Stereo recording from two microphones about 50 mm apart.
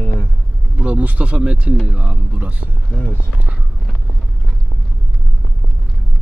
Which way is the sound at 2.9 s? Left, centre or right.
Left.